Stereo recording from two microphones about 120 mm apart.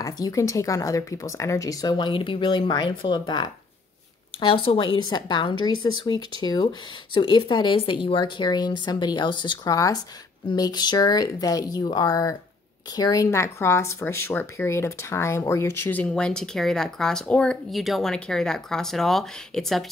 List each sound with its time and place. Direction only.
0.0 s speech: 25° left (ahead or behind)
4.4 s speech: 50° left (ahead or behind)
9.8 s speech: 30° left (ahead or behind); by 19.9 s centre (ahead or behind)